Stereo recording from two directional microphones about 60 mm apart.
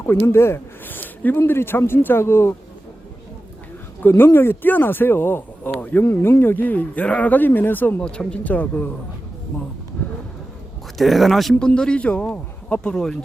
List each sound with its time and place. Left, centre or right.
0.2 s speech: left
0.9 s speech: left
4.2 s speech: left
10.0 s speech: left
10.9 s speech: centre
11.6 s a man's voice: centre